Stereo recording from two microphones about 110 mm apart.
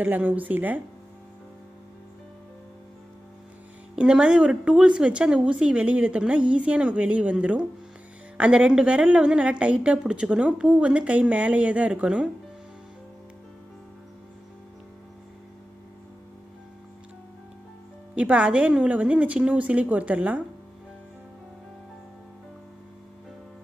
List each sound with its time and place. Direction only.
0.0 s a woman's voice: 15° right (ahead or behind)
3.9 s a woman's voice: 10° right (ahead or behind)
18.1 s a woman's voice: 10° right (ahead or behind)